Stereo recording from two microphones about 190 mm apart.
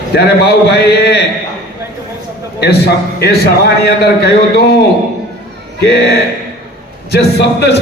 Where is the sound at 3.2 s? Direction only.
60° left (ahead or behind).